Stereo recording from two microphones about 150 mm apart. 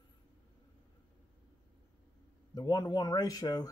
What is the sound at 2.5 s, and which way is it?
Speech, 25° left (ahead or behind).